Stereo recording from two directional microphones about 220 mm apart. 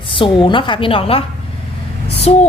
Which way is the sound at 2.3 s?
30° left (ahead or behind).